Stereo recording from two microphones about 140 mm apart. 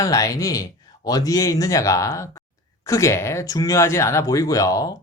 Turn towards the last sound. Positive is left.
turn(degrees=25)  # may be behind; listen again after turning